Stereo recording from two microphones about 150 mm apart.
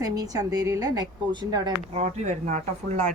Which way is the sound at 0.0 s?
25° right (ahead or behind).